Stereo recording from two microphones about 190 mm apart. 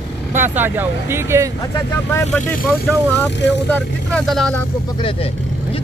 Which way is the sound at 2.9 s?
5° left (ahead or behind).